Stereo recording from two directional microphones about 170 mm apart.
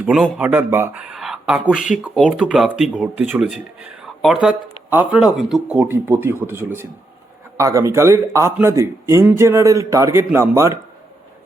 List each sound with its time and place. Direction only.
0.0 s speech: 5° right (ahead or behind)